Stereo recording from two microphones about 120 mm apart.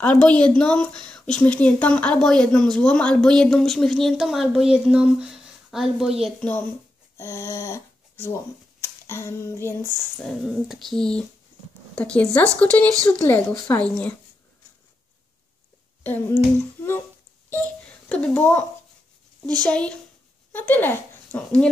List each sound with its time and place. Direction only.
0.0 s speech: 10° left (ahead or behind); by 6.3 s 5° right (ahead or behind)
7.2 s speech: 20° left (ahead or behind)
8.8 s a sound: 25° left (ahead or behind)
10.4 s speech: centre (ahead or behind)
16.0 s speech: 15° left (ahead or behind)
17.6 s a sound: 10° left (ahead or behind)
19.4 s speech: 10° left (ahead or behind)